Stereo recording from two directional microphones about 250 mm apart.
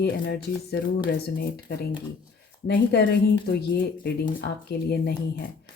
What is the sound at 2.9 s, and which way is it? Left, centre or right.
Speech, left.